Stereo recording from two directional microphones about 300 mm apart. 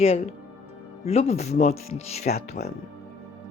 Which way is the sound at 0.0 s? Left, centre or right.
Centre.